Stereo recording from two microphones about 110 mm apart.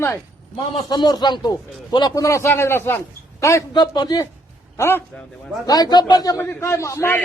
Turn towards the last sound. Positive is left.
turn(degrees=25)  # may be behind; listen again after turning